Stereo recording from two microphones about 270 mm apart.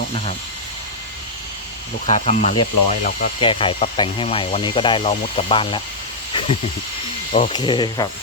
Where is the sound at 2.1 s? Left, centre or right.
Left.